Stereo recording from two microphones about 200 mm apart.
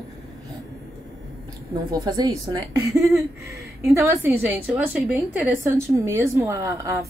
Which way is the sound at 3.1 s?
15° right (ahead or behind).